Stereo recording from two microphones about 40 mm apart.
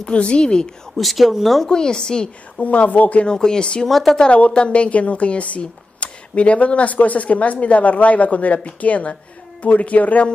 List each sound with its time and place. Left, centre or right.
0.0 s a woman's voice: left
0.9 s speech: centre
1.7 s a woman's voice: centre
2.6 s speech: left
3.3 s a woman's voice: centre
3.8 s speech: centre
4.3 s speech: left